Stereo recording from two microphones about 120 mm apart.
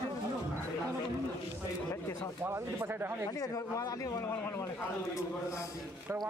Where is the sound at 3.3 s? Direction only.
30° left (ahead or behind).